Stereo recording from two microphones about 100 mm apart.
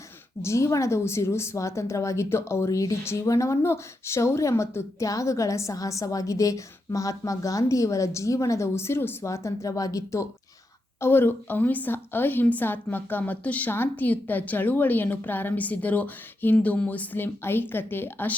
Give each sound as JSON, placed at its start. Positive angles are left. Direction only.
{"t": 0.4, "sound": "a woman's voice", "side_deg": 30}
{"t": 11.0, "sound": "a woman's voice", "side_deg": 20}